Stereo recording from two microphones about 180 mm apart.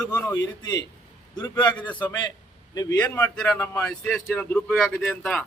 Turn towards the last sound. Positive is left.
turn(degrees=10)  # may be behind; listen again after turning